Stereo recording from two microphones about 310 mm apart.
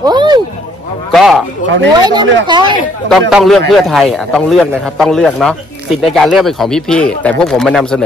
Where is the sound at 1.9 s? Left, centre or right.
Centre.